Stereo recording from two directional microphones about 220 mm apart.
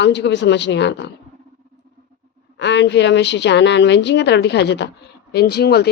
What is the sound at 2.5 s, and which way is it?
A woman's voice, 50° left (ahead or behind).